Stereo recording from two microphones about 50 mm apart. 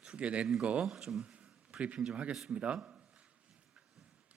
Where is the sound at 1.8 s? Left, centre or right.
Right.